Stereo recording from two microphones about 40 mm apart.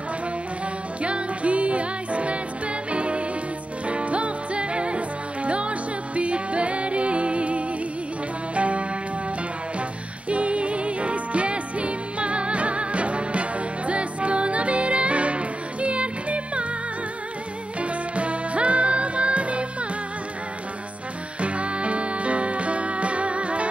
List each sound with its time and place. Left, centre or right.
1.0 s music: right
10.3 s music: right
17.7 s music: right
21.4 s music: right